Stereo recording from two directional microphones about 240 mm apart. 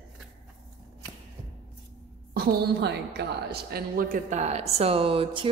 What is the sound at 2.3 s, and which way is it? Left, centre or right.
A woman's voice, right.